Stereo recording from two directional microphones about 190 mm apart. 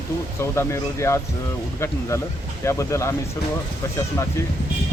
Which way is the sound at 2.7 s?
15° left (ahead or behind).